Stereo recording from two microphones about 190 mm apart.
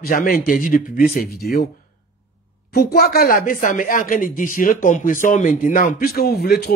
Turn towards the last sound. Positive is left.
turn(degrees=55)  # may be behind; listen again after turning